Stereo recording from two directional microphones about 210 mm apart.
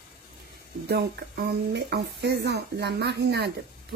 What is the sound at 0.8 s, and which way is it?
A woman's voice, 50° right (ahead or behind).